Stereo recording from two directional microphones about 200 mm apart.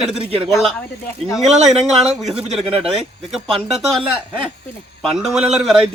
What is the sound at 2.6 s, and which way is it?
Speech, 30° right (ahead or behind).